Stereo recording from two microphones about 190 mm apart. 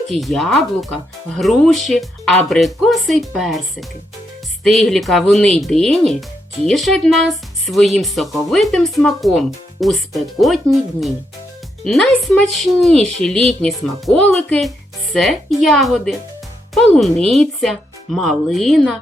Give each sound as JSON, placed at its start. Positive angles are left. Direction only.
{"t": 0.1, "sound": "speech", "side_deg": 0}